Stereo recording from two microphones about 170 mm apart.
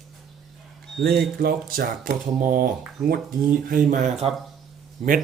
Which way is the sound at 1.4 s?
60° right (ahead or behind).